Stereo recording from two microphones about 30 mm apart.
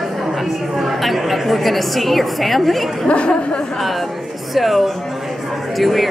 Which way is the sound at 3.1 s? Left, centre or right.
Left.